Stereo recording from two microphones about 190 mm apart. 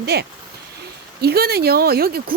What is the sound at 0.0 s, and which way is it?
Speech, 55° right (ahead or behind).